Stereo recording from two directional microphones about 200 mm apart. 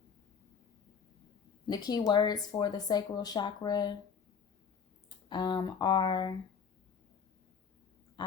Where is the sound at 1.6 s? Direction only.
20° left (ahead or behind).